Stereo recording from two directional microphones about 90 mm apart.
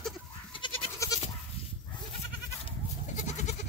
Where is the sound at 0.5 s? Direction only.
70° left (ahead or behind).